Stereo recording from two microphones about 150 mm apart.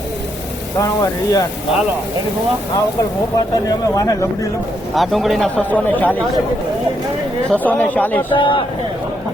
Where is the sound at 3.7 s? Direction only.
25° left (ahead or behind).